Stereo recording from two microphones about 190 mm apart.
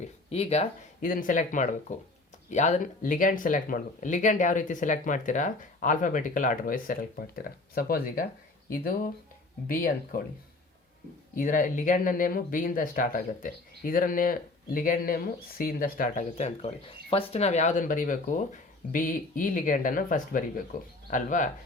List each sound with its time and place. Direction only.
0.0 s speech: 35° left (ahead or behind); by 10.2 s 50° left (ahead or behind)
11.3 s speech: 45° left (ahead or behind)